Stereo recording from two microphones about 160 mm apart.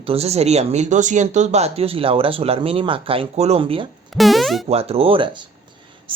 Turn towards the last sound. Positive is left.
turn(degrees=-35)  # may be behind; listen again after turning